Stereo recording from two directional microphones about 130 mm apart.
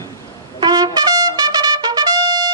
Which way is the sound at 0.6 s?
35° right (ahead or behind).